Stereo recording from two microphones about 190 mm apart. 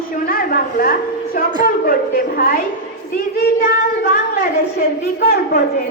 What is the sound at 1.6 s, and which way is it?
A woman's voice, 50° left (ahead or behind).